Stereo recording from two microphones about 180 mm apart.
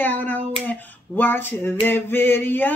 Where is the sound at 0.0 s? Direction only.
10° left (ahead or behind).